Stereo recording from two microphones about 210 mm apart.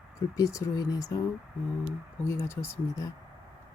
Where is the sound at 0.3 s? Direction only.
15° left (ahead or behind).